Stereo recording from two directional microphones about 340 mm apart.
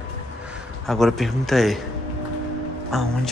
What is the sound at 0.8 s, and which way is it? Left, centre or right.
Speech, centre.